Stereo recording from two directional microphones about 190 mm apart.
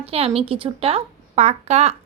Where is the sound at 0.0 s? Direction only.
30° right (ahead or behind).